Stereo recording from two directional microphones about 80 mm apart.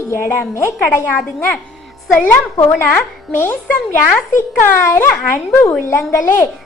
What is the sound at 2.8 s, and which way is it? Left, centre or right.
Speech, left.